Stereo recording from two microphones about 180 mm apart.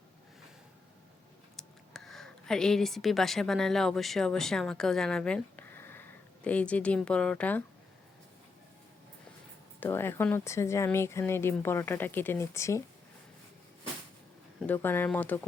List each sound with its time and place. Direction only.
1.5 s speech: centre (ahead or behind)
9.8 s speech: 10° left (ahead or behind)
14.7 s speech: 10° left (ahead or behind)